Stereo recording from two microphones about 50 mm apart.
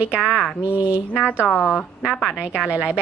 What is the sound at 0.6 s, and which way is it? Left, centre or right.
Speech, right.